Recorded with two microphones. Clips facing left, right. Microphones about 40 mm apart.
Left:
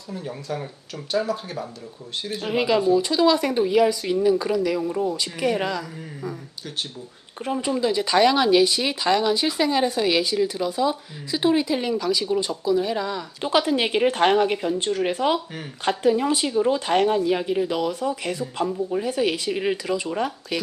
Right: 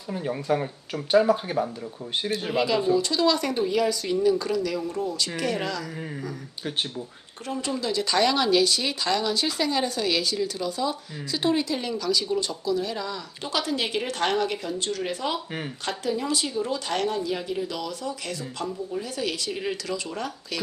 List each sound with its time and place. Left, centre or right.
0.1 s speech: right
2.5 s speech: centre
7.4 s speech: centre